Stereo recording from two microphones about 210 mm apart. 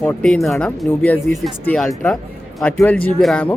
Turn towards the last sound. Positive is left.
turn(degrees=5)  # may be behind; listen again after turning